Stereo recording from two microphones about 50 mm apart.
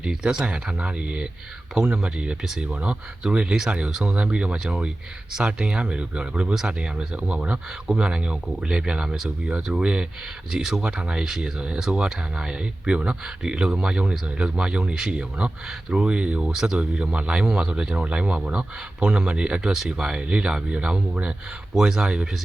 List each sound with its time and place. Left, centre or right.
0.0 s speech: centre
6.5 s speech: centre
14.9 s speech: centre
15.2 s speech: right
19.7 s speech: centre
21.8 s speech: centre